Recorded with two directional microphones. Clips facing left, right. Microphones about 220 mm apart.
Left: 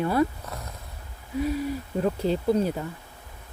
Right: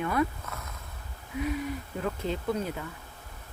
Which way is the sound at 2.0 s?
35° left (ahead or behind).